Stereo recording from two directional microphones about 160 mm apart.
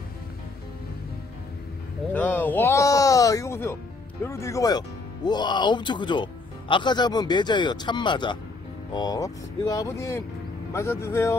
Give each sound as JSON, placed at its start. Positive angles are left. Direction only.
{"t": 2.1, "sound": "music", "side_deg": 10}
{"t": 4.2, "sound": "a man's voice", "side_deg": 20}